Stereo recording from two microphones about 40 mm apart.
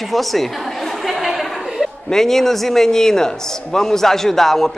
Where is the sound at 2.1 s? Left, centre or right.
Centre.